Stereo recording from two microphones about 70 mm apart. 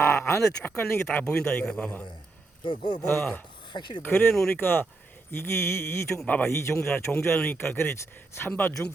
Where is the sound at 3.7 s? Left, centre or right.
Left.